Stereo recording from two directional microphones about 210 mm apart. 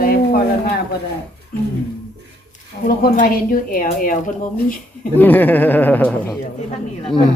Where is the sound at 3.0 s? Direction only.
40° left (ahead or behind).